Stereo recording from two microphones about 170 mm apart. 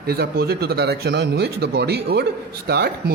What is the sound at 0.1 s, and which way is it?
A man's voice, 65° right (ahead or behind).